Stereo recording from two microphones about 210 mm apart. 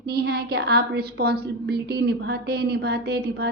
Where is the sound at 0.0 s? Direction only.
50° right (ahead or behind).